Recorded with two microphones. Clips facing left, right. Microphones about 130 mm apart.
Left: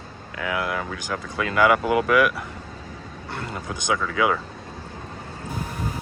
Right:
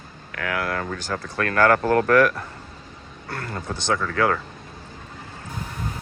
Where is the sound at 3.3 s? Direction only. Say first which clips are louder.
Right 1 dB; 20° left (ahead or behind).